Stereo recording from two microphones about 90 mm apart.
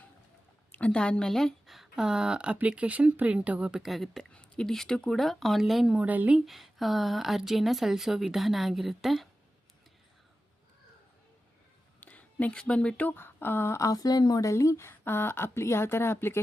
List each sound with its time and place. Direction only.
0.7 s speech: 15° left (ahead or behind); by 6.3 s 15° right (ahead or behind)
6.3 s speech: centre (ahead or behind)
11.9 s speech: 15° left (ahead or behind)